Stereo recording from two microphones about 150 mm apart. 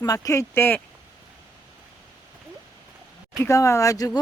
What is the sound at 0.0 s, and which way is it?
Speech, 25° left (ahead or behind).